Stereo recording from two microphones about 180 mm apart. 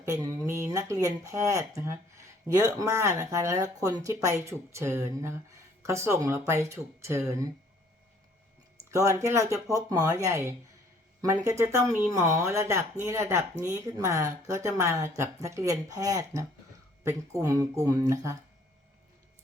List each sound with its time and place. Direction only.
0.0 s speech: 20° right (ahead or behind)
8.9 s speech: 15° right (ahead or behind)
11.4 s speech: 15° right (ahead or behind)